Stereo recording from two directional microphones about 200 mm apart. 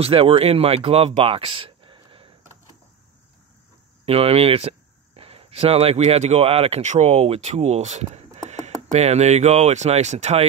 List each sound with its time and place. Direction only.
0.0 s speech: 30° right (ahead or behind)
4.0 s speech: 30° right (ahead or behind)